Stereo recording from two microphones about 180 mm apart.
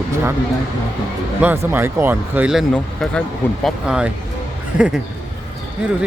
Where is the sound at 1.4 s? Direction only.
10° right (ahead or behind).